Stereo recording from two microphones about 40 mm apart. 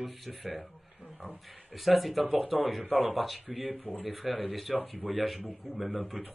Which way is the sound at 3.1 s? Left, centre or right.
Centre.